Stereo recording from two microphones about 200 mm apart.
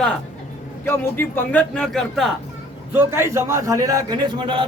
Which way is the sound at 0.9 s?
10° left (ahead or behind).